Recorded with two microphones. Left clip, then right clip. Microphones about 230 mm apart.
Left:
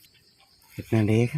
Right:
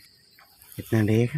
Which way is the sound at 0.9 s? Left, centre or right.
Centre.